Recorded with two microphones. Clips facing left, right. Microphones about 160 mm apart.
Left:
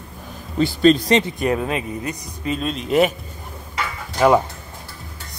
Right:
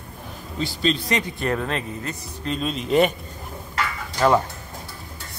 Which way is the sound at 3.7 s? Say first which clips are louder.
Left 2 dB; 15° left (ahead or behind).